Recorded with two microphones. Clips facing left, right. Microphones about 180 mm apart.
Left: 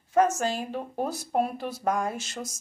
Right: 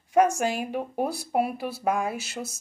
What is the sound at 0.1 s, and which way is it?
Speech, 15° right (ahead or behind).